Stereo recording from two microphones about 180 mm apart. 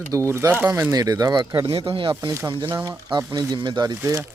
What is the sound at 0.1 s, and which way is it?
Speech, 15° right (ahead or behind).